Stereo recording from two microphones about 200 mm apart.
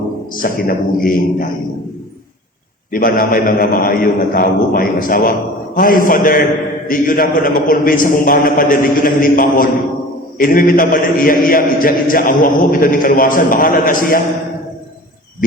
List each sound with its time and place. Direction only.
0.3 s a man's voice: 45° left (ahead or behind)
2.9 s a man's voice: 45° left (ahead or behind)